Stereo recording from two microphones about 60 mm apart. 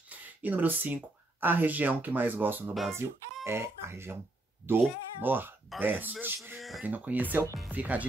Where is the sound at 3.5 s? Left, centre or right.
Right.